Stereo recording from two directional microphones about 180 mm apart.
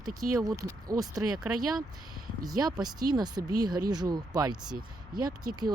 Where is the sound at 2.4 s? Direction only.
20° right (ahead or behind).